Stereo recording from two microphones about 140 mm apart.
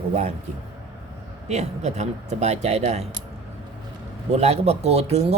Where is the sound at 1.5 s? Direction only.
55° right (ahead or behind).